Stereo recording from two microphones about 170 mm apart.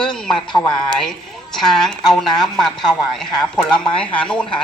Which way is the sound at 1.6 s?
Centre (ahead or behind).